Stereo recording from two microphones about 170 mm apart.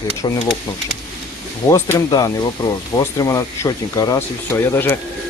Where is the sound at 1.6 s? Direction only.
15° left (ahead or behind).